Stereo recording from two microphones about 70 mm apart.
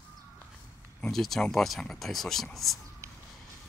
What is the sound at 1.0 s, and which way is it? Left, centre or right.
Speech, centre.